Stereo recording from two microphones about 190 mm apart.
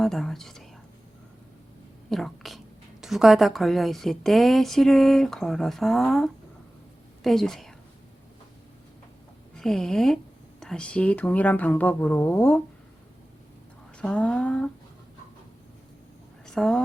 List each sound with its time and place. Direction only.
0.0 s speech: centre (ahead or behind)
2.0 s a woman's voice: centre (ahead or behind)
9.6 s a woman's voice: centre (ahead or behind)
14.0 s a woman's voice: 5° left (ahead or behind)
16.5 s speech: 5° left (ahead or behind)